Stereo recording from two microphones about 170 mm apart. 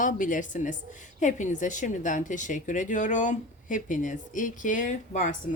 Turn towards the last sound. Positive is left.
turn(degrees=50)  # may be behind; listen again after turning